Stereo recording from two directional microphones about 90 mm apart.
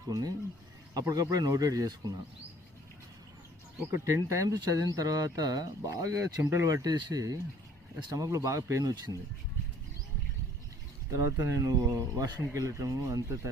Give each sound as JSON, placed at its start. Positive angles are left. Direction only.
{"t": 0.1, "sound": "speech", "side_deg": -40}
{"t": 3.9, "sound": "speech", "side_deg": -35}
{"t": 5.8, "sound": "speech", "side_deg": -35}
{"t": 6.8, "sound": "speech", "side_deg": -45}
{"t": 11.1, "sound": "speech", "side_deg": -35}